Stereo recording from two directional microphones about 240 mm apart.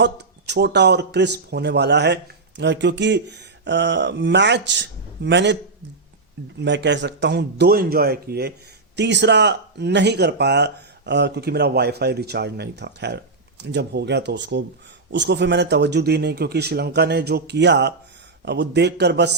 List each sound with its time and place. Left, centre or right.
0.0 s speech: right
6.6 s speech: right